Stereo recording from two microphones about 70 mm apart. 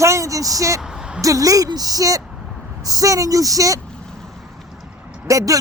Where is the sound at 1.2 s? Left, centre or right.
Right.